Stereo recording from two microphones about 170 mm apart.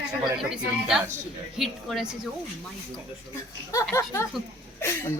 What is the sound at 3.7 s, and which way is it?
Speech, 15° left (ahead or behind).